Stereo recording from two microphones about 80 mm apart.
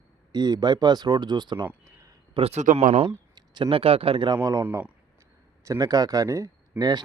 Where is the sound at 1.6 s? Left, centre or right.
Right.